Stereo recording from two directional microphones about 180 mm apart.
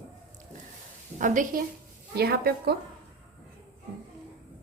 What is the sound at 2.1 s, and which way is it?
Speech, 60° right (ahead or behind).